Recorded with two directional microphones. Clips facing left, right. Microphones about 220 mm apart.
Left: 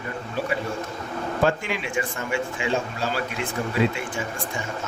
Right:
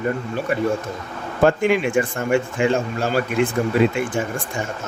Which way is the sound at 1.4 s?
50° right (ahead or behind).